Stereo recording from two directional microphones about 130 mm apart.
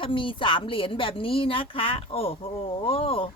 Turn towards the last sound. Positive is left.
turn(degrees=45)  # may be behind; listen again after turning